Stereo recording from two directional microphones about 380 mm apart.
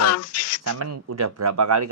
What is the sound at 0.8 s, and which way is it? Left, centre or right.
Speech, right.